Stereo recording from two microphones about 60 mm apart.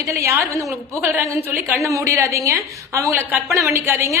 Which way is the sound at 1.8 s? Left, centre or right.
Right.